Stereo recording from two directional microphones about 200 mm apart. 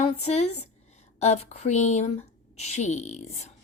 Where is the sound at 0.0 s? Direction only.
35° left (ahead or behind).